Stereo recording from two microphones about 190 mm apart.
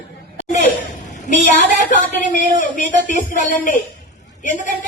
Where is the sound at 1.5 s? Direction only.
40° left (ahead or behind).